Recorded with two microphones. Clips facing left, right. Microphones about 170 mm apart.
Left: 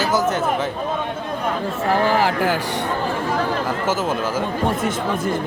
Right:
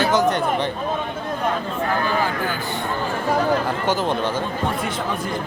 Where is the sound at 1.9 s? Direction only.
90° left.